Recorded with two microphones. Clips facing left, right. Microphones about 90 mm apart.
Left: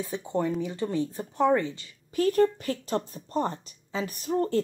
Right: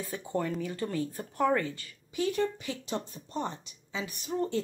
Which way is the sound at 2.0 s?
45° left (ahead or behind).